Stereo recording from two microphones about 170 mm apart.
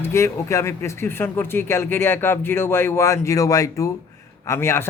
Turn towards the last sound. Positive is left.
turn(degrees=15)  # may be behind; listen again after turning